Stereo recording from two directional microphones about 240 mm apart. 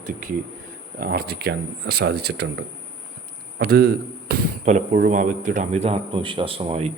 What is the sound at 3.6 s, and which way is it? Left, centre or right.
A man's voice, right.